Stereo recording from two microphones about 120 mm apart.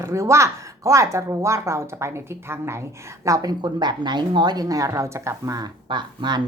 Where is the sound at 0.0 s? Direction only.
25° right (ahead or behind).